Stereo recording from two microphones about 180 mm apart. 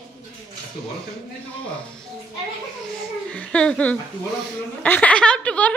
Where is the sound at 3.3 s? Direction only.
5° left (ahead or behind).